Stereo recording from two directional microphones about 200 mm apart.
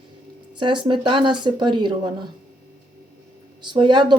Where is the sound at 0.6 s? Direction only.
25° right (ahead or behind).